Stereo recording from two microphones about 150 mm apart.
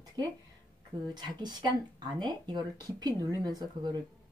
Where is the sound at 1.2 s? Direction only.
30° right (ahead or behind).